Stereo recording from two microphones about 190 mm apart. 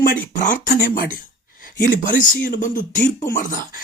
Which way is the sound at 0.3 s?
40° left (ahead or behind).